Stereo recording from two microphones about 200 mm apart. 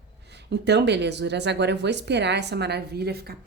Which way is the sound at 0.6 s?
60° right (ahead or behind).